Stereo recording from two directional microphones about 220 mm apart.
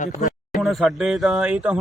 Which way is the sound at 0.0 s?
35° left (ahead or behind).